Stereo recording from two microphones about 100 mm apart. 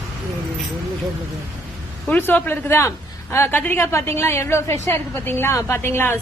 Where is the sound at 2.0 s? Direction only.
15° left (ahead or behind).